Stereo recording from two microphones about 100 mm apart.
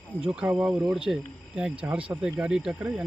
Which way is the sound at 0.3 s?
10° right (ahead or behind).